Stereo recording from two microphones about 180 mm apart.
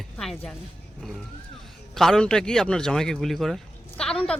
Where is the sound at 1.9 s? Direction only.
5° left (ahead or behind).